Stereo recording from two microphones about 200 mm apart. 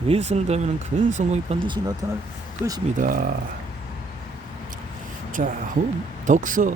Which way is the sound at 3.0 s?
45° right (ahead or behind).